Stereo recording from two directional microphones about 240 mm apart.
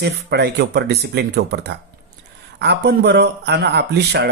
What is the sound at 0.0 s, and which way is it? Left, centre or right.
A man's voice, right.